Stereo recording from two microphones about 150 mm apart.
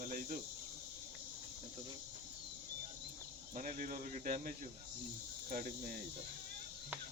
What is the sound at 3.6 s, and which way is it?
Speech, 60° right (ahead or behind).